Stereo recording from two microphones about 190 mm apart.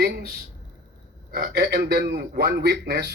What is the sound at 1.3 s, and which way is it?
A man's voice, 55° right (ahead or behind).